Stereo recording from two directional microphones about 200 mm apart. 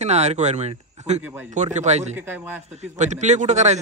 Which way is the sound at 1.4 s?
35° right (ahead or behind).